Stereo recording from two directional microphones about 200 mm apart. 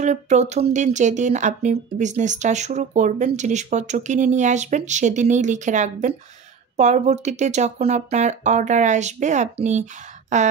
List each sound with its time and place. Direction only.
0.0 s speech: 35° right (ahead or behind)